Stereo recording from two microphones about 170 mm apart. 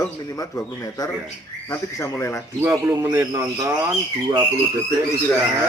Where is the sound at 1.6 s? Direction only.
15° left (ahead or behind).